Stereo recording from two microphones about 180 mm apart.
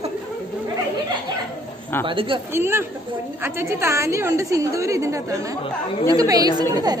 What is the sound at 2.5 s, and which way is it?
A woman's voice, 15° right (ahead or behind).